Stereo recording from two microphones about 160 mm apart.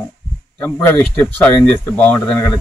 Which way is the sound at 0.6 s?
15° left (ahead or behind).